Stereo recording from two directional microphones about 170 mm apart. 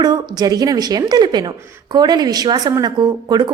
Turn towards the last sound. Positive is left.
turn(degrees=-25)  # may be behind; listen again after turning